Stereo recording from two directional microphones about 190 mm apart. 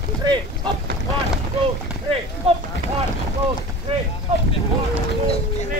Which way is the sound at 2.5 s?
30° right (ahead or behind).